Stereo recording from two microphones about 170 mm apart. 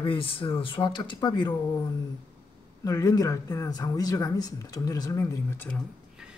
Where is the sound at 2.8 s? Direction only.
20° left (ahead or behind).